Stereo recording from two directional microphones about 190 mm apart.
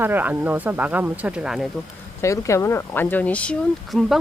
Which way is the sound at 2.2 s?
15° left (ahead or behind).